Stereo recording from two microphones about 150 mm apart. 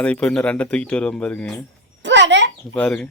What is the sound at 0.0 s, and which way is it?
Speech, 5° left (ahead or behind).